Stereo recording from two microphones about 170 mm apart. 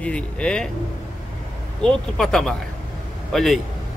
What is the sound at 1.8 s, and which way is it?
A man's voice, centre (ahead or behind).